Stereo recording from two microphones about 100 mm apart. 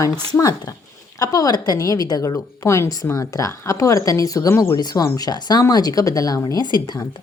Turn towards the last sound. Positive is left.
turn(degrees=40)  # may be behind; listen again after turning